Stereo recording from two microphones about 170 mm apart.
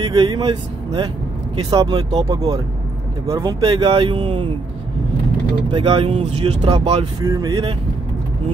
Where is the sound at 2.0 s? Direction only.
35° right (ahead or behind).